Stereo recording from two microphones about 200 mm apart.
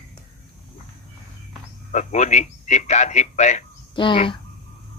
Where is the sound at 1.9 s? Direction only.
35° left (ahead or behind).